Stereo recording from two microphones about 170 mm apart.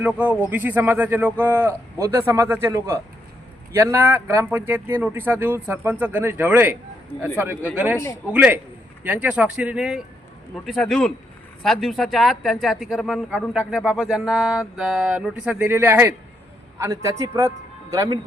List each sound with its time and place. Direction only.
0.0 s a man's voice: 10° right (ahead or behind)